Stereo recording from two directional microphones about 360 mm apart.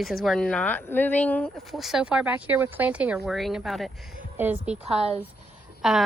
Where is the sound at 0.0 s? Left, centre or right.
Centre.